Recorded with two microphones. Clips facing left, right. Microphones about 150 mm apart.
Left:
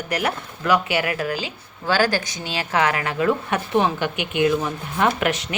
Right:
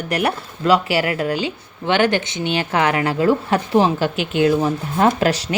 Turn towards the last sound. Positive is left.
turn(degrees=-30)  # may be behind; listen again after turning